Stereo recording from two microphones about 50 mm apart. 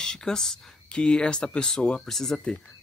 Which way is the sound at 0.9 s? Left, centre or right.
Centre.